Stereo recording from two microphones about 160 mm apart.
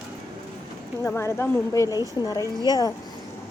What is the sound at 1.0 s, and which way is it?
A woman's voice, 15° left (ahead or behind).